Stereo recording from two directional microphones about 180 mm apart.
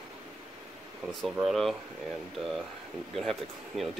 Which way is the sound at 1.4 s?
Centre (ahead or behind).